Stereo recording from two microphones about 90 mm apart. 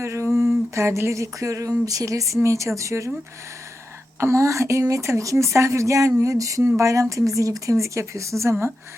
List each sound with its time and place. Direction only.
0.0 s a sound: 30° right (ahead or behind)
0.7 s a woman's voice: 30° right (ahead or behind)
4.2 s a woman's voice: 35° right (ahead or behind)